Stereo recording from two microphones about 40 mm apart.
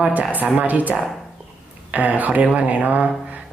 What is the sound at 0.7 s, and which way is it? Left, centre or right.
A woman's voice, right.